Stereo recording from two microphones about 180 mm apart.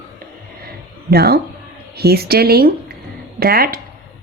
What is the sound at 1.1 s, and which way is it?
A woman's voice, 60° right (ahead or behind).